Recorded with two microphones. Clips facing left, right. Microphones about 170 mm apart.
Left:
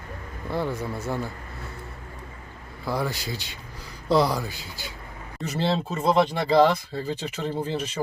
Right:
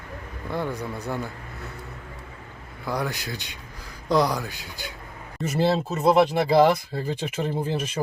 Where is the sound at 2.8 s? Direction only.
Centre (ahead or behind).